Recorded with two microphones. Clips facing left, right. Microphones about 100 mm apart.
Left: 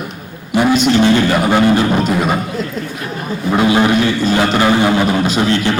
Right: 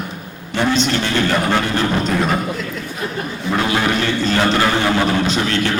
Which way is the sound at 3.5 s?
15° left (ahead or behind).